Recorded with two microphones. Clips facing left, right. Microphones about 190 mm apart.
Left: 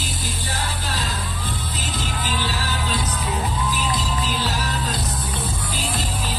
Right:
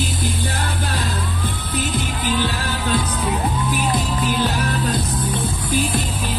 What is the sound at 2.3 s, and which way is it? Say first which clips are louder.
Music: right 6 dB; 55° right (ahead or behind).